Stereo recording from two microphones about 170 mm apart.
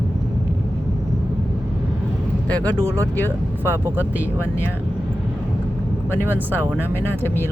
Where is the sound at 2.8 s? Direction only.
15° right (ahead or behind).